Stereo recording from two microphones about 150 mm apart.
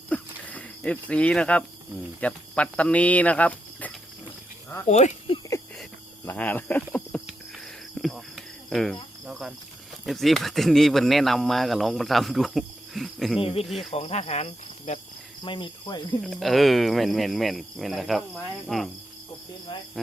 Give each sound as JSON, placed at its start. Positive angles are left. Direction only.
{"t": 0.1, "sound": "cricket", "side_deg": 10}
{"t": 2.2, "sound": "speech", "side_deg": 10}
{"t": 4.9, "sound": "speech", "side_deg": 50}
{"t": 6.2, "sound": "speech", "side_deg": 10}
{"t": 7.6, "sound": "cricket", "side_deg": 0}
{"t": 9.3, "sound": "speech", "side_deg": -5}
{"t": 13.4, "sound": "speech", "side_deg": 40}
{"t": 13.7, "sound": "speech", "side_deg": 0}
{"t": 13.9, "sound": "cricket", "side_deg": 45}
{"t": 15.4, "sound": "speech", "side_deg": 35}
{"t": 16.2, "sound": "speech", "side_deg": 0}